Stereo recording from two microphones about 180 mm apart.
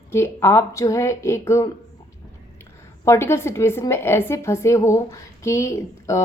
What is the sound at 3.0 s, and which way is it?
A woman's voice, 15° left (ahead or behind).